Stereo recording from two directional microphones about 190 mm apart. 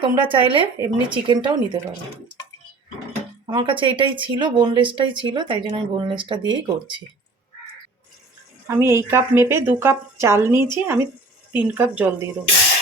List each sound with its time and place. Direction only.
0.0 s speech: 25° right (ahead or behind)
3.4 s speech: 25° right (ahead or behind)
8.6 s a woman's voice: 15° right (ahead or behind)